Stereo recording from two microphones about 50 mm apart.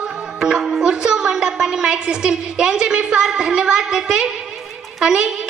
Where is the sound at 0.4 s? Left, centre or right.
Centre.